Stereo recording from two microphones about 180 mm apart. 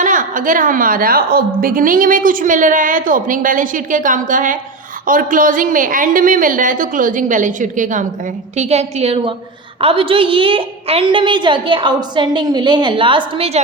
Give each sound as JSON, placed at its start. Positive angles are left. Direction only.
{"t": 0.0, "sound": "a woman's voice", "side_deg": -45}